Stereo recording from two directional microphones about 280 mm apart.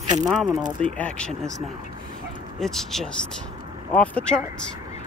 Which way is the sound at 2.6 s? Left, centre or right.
Centre.